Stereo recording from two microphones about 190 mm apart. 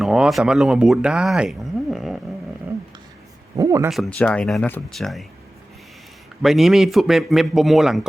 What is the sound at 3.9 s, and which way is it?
Speech, centre (ahead or behind).